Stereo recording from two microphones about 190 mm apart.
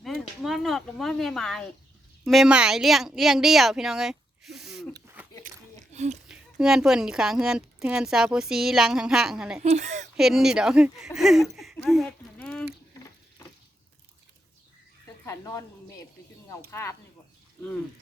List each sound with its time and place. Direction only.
0.0 s a woman's voice: centre (ahead or behind)
5.4 s a sound: 35° right (ahead or behind)
6.2 s speech: 5° right (ahead or behind)
9.6 s speech: 35° right (ahead or behind)
10.2 s speech: centre (ahead or behind)
11.8 s a sound: centre (ahead or behind)
15.2 s speech: 15° left (ahead or behind)